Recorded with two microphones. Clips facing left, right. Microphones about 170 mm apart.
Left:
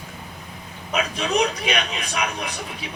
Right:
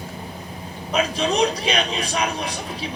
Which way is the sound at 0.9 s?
35° right (ahead or behind).